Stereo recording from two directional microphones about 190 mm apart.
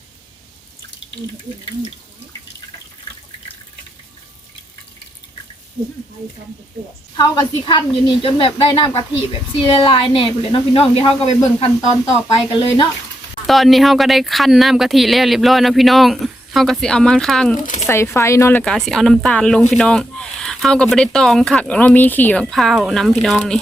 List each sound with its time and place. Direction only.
7.2 s speech: 25° left (ahead or behind)
12.3 s speech: 25° left (ahead or behind)
13.5 s speech: centre (ahead or behind)